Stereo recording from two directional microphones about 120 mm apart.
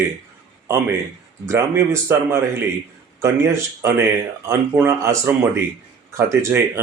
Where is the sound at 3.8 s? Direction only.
25° right (ahead or behind).